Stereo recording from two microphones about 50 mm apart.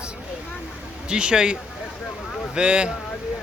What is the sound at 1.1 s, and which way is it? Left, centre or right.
Speech, centre.